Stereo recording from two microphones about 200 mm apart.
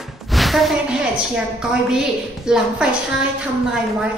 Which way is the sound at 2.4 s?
5° right (ahead or behind).